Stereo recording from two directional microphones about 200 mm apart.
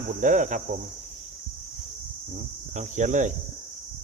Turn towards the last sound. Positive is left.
turn(degrees=-40)  # may be behind; listen again after turning